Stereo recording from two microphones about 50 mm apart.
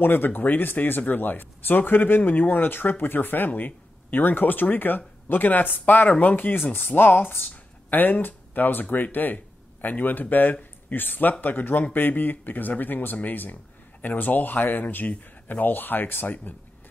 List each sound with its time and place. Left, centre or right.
0.0 s speech: left